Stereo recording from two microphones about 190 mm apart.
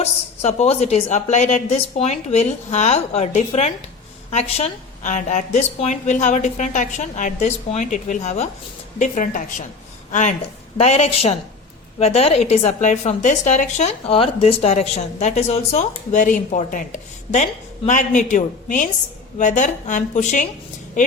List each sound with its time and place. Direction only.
0.0 s a woman's voice: 35° left (ahead or behind)